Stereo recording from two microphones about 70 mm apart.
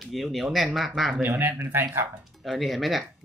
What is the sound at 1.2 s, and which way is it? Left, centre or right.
Speech, right.